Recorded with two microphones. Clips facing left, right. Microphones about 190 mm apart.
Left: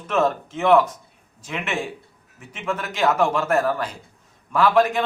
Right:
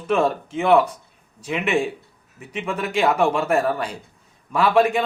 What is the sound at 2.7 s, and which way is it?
Speech, 10° right (ahead or behind).